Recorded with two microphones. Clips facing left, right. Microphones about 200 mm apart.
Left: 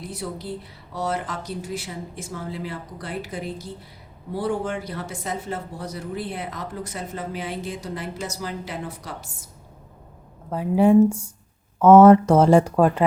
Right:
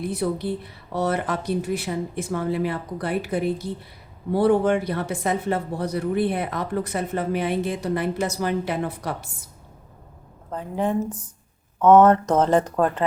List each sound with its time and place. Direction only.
0.0 s speech: 60° right (ahead or behind)
10.5 s speech: 10° left (ahead or behind)